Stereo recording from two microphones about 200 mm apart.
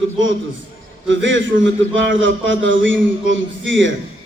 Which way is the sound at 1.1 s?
70° right (ahead or behind).